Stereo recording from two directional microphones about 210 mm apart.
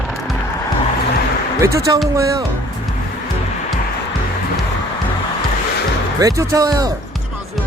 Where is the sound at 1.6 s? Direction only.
15° right (ahead or behind).